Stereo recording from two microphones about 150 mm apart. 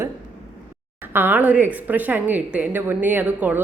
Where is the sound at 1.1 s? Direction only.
15° right (ahead or behind).